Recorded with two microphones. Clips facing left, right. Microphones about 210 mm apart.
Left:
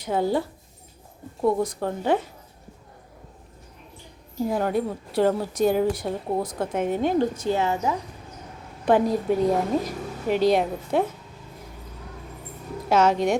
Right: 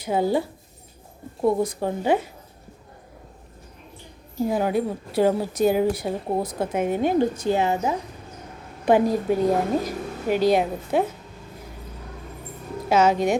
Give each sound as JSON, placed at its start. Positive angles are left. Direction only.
{"t": 0.0, "sound": "a woman's voice", "side_deg": -10}
{"t": 4.4, "sound": "a woman's voice", "side_deg": -5}
{"t": 12.9, "sound": "a woman's voice", "side_deg": -5}